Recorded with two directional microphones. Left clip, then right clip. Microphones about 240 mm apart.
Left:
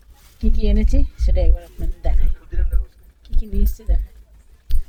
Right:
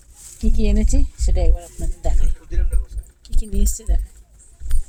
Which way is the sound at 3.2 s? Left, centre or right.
Centre.